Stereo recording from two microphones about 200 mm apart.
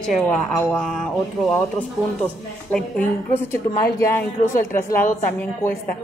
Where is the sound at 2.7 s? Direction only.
10° left (ahead or behind).